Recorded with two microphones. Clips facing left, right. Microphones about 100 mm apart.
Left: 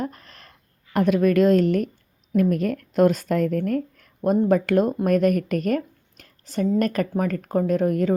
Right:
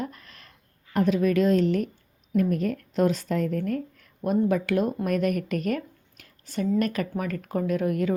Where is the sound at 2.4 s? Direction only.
70° left (ahead or behind).